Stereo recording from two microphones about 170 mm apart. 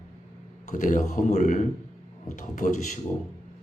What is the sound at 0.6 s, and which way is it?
Speech, 50° left (ahead or behind).